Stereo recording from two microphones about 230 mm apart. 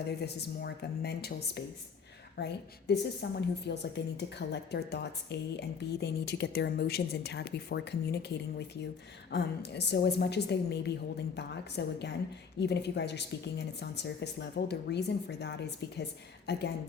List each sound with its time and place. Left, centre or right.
0.2 s a woman's voice: left